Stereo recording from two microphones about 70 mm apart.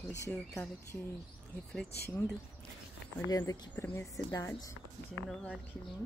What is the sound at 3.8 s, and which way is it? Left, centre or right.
Speech, left.